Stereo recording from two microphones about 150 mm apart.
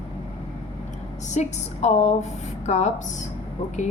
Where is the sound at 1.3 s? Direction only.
50° left (ahead or behind).